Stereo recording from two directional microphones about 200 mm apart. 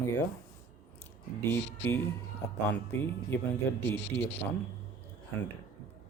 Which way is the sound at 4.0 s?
60° left (ahead or behind).